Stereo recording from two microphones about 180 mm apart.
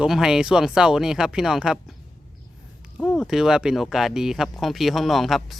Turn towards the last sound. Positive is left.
turn(degrees=0)  # may be behind; listen again after turning